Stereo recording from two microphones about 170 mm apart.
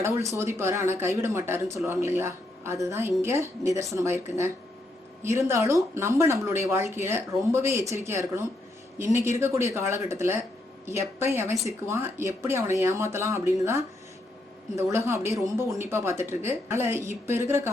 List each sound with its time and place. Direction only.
0.0 s speech: 15° right (ahead or behind)